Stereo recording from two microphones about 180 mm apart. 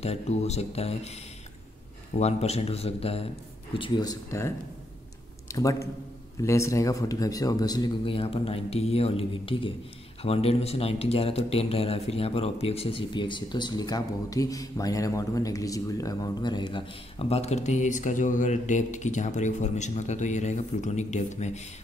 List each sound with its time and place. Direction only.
0.0 s speech: 35° left (ahead or behind)
2.1 s a man's voice: 35° left (ahead or behind)